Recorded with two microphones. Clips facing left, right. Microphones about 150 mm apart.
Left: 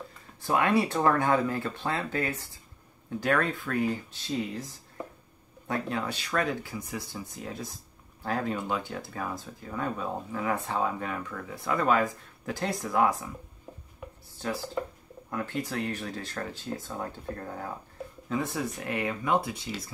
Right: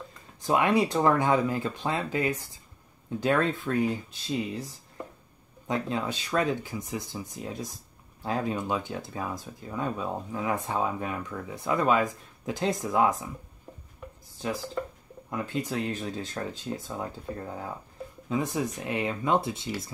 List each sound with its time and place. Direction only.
0.4 s speech: 15° right (ahead or behind)
5.7 s speech: 20° right (ahead or behind)
14.4 s speech: 15° right (ahead or behind)